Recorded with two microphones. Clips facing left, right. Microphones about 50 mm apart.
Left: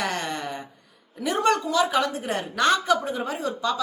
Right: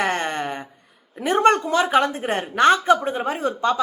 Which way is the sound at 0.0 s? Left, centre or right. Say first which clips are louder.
Right 5 dB; right.